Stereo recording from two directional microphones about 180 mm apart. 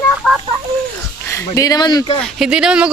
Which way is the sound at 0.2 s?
5° right (ahead or behind).